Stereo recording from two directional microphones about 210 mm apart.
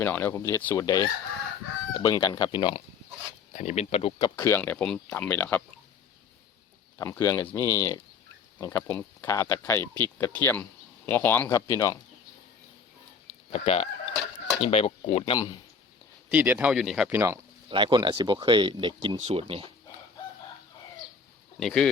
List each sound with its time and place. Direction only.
0.0 s speech: 10° left (ahead or behind)
3.5 s speech: 35° left (ahead or behind)
4.4 s speech: 10° left (ahead or behind)
7.0 s speech: 15° left (ahead or behind)
13.5 s speech: 30° left (ahead or behind)
16.3 s speech: 10° right (ahead or behind)
17.7 s speech: 20° right (ahead or behind)
21.6 s speech: 5° left (ahead or behind)